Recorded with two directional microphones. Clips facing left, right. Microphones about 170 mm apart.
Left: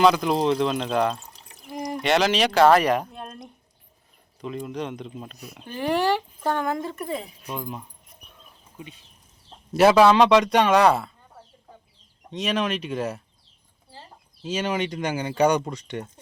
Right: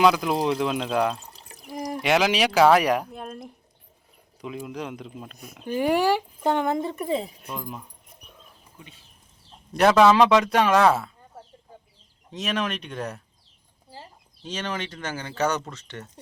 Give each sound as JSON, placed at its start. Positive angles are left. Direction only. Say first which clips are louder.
{"t": 0.0, "sound": "a man's voice", "louder": "left 1 dB", "side_deg": -5}
{"t": 7.4, "sound": "a man's voice", "louder": "left 2 dB", "side_deg": 0}
{"t": 9.7, "sound": "a man's voice", "louder": "left 1 dB", "side_deg": 5}
{"t": 12.3, "sound": "a man's voice", "louder": "left 3 dB", "side_deg": 0}
{"t": 14.4, "sound": "speech", "louder": "left 5 dB", "side_deg": 10}